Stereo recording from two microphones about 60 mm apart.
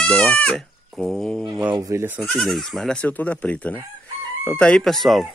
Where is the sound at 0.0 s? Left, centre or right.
Centre.